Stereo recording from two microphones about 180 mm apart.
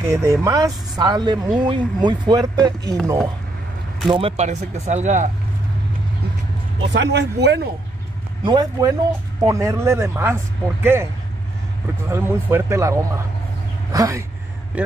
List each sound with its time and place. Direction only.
0.0 s speech: 20° right (ahead or behind)
4.1 s speech: 30° right (ahead or behind)
6.9 s speech: 75° right (ahead or behind)
8.5 s speech: 20° right (ahead or behind)
12.1 s speech: 15° right (ahead or behind)